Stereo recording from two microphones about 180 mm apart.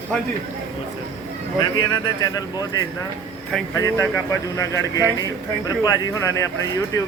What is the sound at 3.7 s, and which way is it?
Speech, 20° left (ahead or behind).